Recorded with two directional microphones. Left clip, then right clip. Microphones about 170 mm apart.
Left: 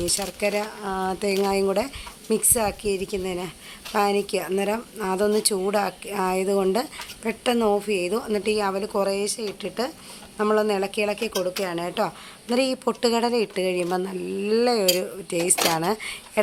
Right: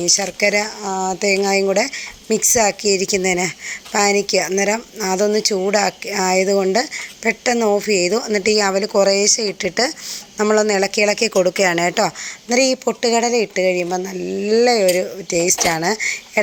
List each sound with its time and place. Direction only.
0.1 s a woman's voice: 15° right (ahead or behind)
12.5 s a woman's voice: 10° right (ahead or behind)